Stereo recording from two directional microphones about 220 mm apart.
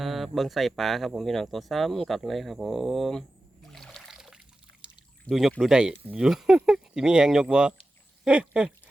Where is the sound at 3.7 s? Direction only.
Centre (ahead or behind).